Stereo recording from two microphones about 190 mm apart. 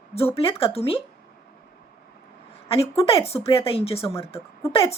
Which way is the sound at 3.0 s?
30° left (ahead or behind).